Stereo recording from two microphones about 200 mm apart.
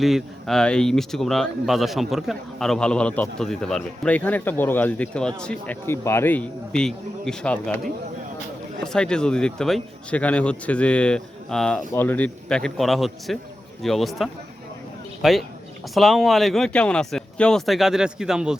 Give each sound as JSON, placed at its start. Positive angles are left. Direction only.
{"t": 0.0, "sound": "speech", "side_deg": 0}
{"t": 8.8, "sound": "speech", "side_deg": 5}